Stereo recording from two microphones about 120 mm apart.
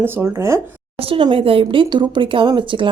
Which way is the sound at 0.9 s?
50° right (ahead or behind).